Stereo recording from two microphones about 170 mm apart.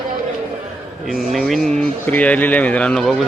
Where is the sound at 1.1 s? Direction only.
Centre (ahead or behind).